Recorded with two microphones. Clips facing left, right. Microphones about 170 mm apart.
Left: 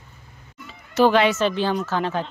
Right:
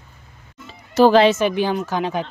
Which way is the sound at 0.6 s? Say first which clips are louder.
Right 4 dB; 35° right (ahead or behind).